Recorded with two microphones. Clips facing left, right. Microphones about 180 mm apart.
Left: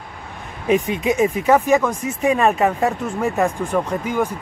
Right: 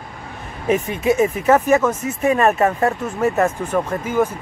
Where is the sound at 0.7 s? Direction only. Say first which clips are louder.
Right 1 dB; 15° left (ahead or behind).